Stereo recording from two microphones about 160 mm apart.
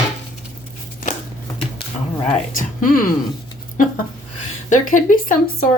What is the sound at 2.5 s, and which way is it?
Speech, 60° left (ahead or behind).